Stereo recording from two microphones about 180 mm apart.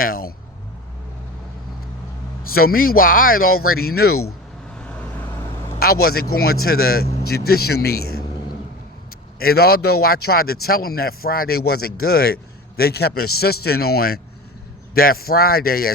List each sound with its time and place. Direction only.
0.0 s speech: 55° left (ahead or behind)
2.6 s speech: 55° left (ahead or behind)
4.8 s vehicle: 10° left (ahead or behind)
5.8 s speech: 60° left (ahead or behind)
9.4 s speech: 60° left (ahead or behind)